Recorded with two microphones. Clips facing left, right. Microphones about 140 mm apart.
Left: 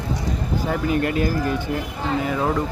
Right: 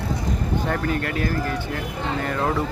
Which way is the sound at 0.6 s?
10° left (ahead or behind).